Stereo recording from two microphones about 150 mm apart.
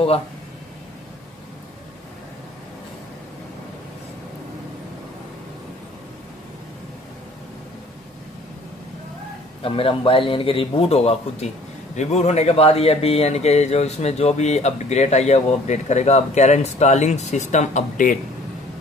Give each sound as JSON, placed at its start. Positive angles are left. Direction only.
{"t": 9.6, "sound": "a man's voice", "side_deg": 35}